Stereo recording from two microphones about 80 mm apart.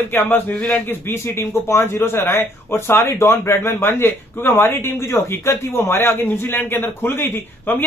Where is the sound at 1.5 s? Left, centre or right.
Left.